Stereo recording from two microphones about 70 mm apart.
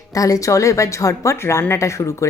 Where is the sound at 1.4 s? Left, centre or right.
Left.